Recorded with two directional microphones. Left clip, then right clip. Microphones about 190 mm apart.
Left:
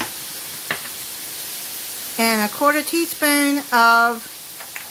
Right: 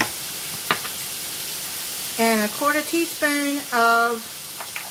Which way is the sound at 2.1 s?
55° left (ahead or behind).